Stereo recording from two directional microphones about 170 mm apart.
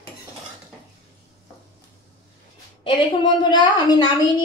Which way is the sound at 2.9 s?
25° left (ahead or behind).